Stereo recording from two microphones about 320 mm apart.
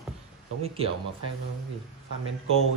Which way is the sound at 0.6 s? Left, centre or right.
Centre.